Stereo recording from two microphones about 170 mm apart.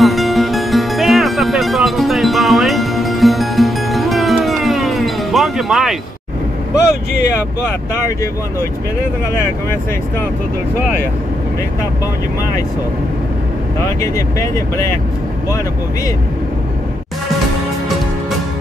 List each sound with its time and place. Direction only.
0.0 s music: centre (ahead or behind)
7.3 s speech: 15° left (ahead or behind)
13.7 s speech: 15° left (ahead or behind)